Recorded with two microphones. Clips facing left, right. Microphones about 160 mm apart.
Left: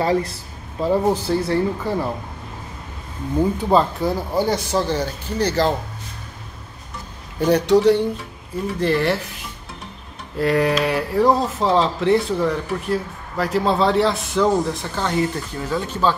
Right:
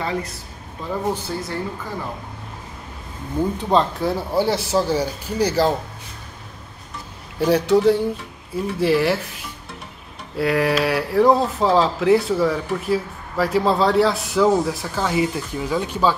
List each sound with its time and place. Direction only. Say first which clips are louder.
0.0 s speech: left 6 dB; 35° left (ahead or behind)
3.3 s speech: left 2 dB; 15° left (ahead or behind)
4.0 s speech: even; 5° right (ahead or behind)
7.3 s speech: left 1 dB; 5° right (ahead or behind)
10.3 s speech: left 1 dB; 5° right (ahead or behind)